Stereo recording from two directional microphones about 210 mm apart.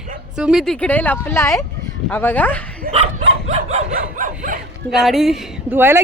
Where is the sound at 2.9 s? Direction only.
30° right (ahead or behind).